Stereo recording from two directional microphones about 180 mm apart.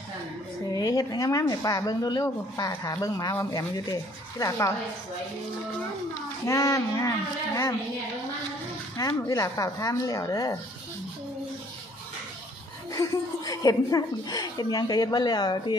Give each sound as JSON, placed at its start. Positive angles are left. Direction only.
{"t": 0.7, "sound": "speech", "side_deg": 20}
{"t": 6.4, "sound": "speech", "side_deg": 15}
{"t": 8.9, "sound": "speech", "side_deg": 20}
{"t": 12.9, "sound": "speech", "side_deg": 20}